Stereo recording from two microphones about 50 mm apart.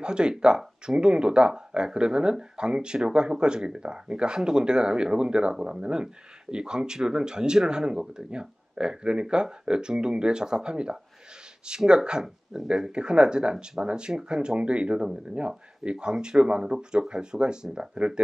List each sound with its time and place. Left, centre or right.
0.0 s speech: centre